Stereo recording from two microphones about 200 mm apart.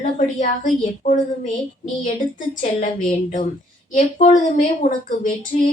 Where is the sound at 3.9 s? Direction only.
40° left (ahead or behind).